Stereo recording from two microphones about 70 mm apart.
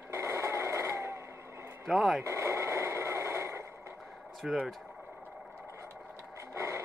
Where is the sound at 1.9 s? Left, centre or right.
Centre.